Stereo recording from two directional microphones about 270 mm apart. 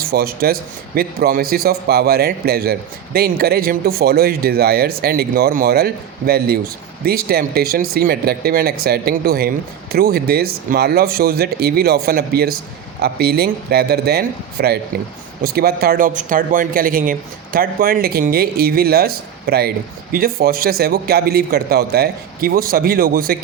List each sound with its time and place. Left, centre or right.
0.0 s a man's voice: right